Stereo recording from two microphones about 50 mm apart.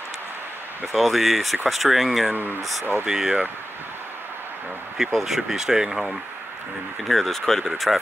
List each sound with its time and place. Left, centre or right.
0.9 s speech: centre
2.3 s speech: right
3.1 s speech: centre
4.9 s speech: centre